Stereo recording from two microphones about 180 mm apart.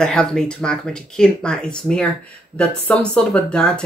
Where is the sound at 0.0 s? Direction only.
5° left (ahead or behind).